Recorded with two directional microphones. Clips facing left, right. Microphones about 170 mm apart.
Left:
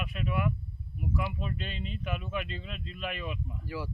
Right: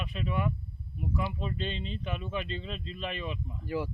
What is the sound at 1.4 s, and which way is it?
Speech, 30° right (ahead or behind).